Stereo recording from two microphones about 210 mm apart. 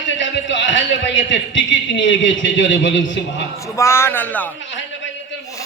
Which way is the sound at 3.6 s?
15° left (ahead or behind).